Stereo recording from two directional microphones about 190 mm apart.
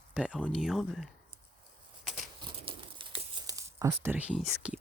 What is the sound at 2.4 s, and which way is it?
Crumpling, 25° right (ahead or behind).